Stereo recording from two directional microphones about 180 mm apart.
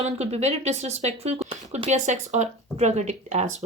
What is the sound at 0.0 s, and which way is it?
Speech, 35° right (ahead or behind).